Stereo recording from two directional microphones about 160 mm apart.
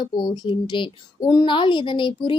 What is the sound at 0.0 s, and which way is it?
A woman's voice, 30° left (ahead or behind).